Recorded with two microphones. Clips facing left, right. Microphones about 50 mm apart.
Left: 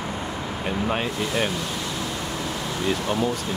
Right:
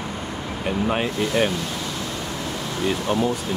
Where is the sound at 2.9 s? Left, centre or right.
Centre.